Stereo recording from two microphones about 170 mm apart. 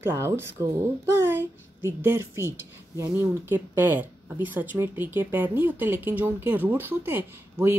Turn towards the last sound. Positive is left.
turn(degrees=-15)  # may be behind; listen again after turning